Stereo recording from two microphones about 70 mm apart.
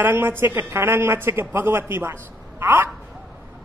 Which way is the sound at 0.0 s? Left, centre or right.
Right.